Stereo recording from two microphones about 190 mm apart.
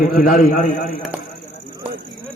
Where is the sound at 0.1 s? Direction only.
50° left (ahead or behind).